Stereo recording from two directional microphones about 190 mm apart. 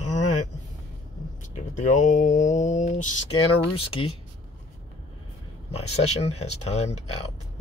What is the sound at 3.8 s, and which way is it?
Speech, 30° left (ahead or behind).